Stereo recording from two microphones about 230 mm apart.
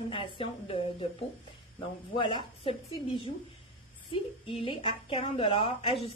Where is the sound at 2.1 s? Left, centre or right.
Left.